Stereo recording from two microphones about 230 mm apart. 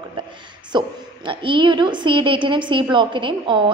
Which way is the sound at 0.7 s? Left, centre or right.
Right.